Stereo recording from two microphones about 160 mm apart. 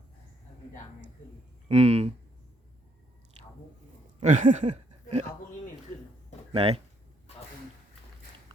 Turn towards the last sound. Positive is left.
turn(degrees=-35)  # may be behind; listen again after turning